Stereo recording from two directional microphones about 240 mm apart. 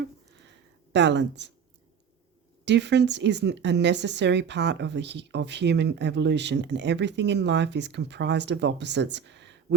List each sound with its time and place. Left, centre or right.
0.9 s speech: right
2.6 s speech: right